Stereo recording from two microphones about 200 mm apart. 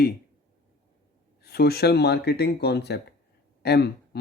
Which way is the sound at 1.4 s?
55° left (ahead or behind).